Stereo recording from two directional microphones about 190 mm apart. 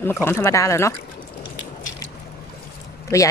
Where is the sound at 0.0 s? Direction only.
10° left (ahead or behind).